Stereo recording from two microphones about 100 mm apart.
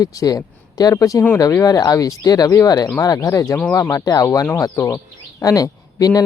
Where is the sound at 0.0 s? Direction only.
35° left (ahead or behind).